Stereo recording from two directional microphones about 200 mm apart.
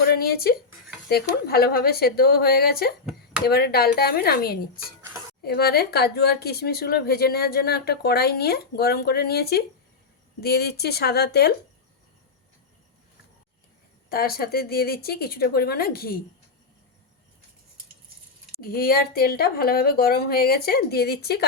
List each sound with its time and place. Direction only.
0.0 s speech: 50° left (ahead or behind)
14.1 s speech: 50° left (ahead or behind)
18.6 s speech: 50° left (ahead or behind)